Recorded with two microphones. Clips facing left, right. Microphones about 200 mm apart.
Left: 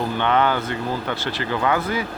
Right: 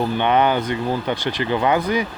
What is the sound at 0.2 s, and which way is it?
Speech, 15° right (ahead or behind).